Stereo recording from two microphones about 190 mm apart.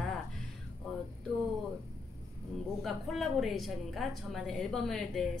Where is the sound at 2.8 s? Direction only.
Centre (ahead or behind).